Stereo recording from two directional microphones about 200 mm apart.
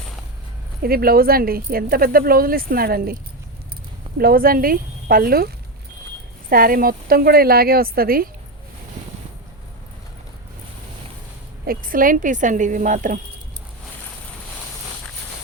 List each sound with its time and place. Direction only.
0.8 s speech: 50° right (ahead or behind)
4.2 s speech: 45° right (ahead or behind)
6.5 s speech: 45° right (ahead or behind)
11.6 s speech: 45° right (ahead or behind)